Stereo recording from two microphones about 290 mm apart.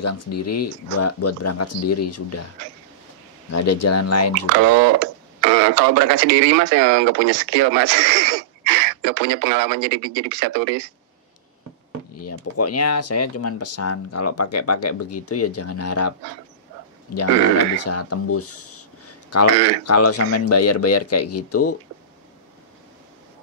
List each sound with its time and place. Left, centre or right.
0.0 s speech: left
3.5 s speech: left
4.5 s speech: right
12.2 s speech: left
17.7 s speech: left